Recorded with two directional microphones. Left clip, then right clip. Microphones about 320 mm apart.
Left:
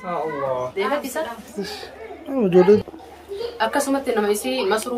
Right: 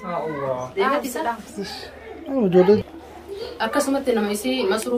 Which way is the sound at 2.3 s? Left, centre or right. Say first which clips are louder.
Left 1 dB; centre.